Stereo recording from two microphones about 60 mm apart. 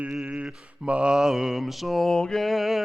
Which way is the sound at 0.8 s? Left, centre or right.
Centre.